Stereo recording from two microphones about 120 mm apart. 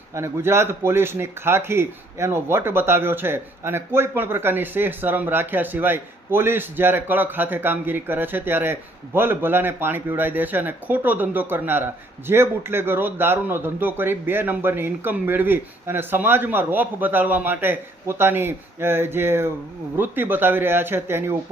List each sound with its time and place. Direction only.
0.1 s speech: 20° right (ahead or behind)